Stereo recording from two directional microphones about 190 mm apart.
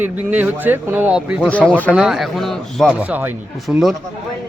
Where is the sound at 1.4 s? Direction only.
5° left (ahead or behind).